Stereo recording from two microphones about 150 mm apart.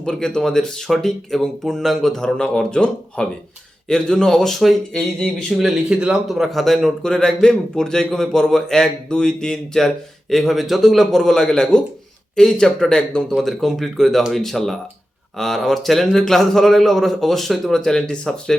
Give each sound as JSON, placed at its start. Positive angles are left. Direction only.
{"t": 0.0, "sound": "speech", "side_deg": 5}